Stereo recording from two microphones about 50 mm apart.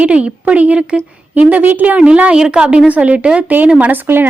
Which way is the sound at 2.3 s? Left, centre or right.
Centre.